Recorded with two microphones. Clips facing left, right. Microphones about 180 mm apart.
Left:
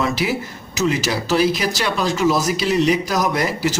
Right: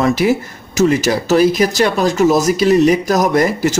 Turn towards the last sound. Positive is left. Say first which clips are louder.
# right 6 dB
turn(degrees=-50)  # may be behind; listen again after turning